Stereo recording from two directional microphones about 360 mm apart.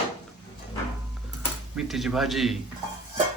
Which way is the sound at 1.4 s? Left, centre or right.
Centre.